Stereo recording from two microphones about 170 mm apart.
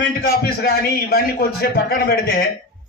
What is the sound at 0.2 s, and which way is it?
A man's voice, 65° left (ahead or behind).